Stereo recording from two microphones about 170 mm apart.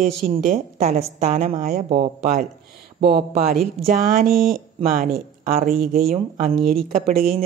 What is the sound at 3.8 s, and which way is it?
Speech, 60° right (ahead or behind).